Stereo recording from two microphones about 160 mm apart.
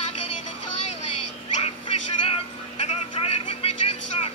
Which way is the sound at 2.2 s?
40° left (ahead or behind).